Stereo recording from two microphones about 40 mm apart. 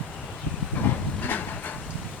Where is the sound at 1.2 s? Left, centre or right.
Left.